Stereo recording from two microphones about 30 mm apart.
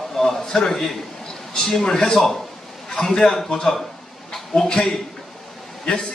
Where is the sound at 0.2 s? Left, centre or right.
Centre.